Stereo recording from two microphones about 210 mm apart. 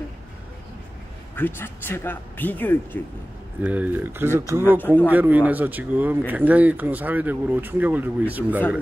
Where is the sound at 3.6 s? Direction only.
5° right (ahead or behind).